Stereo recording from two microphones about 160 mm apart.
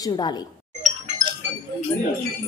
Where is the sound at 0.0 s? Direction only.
25° left (ahead or behind).